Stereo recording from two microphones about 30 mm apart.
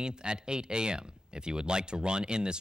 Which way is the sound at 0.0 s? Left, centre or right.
Right.